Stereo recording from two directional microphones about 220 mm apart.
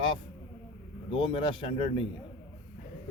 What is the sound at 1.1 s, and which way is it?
Speech, 25° left (ahead or behind).